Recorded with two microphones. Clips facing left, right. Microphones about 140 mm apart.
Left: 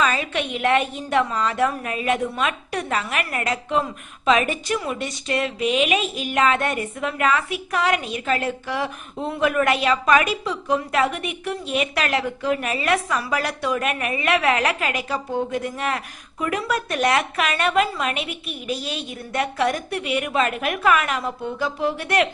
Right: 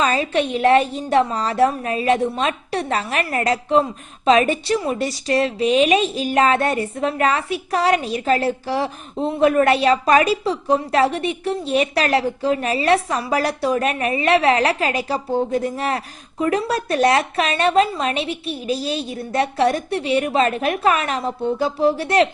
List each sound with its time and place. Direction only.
0.0 s a woman's voice: 30° right (ahead or behind)